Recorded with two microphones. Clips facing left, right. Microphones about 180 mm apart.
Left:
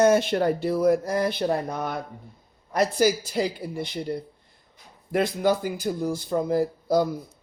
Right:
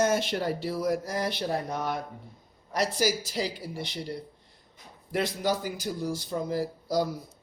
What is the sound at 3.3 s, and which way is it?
Speech, 55° left (ahead or behind).